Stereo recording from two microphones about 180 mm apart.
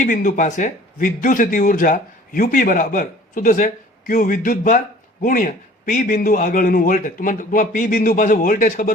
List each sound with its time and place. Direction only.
0.0 s speech: 45° left (ahead or behind)